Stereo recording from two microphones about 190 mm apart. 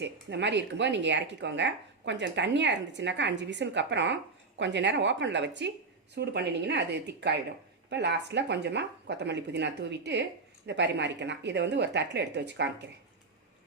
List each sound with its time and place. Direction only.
0.0 s speech: 65° right (ahead or behind)